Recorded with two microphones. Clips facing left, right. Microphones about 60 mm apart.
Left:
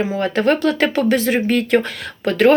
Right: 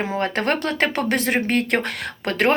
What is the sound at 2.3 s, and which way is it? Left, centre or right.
Speech, right.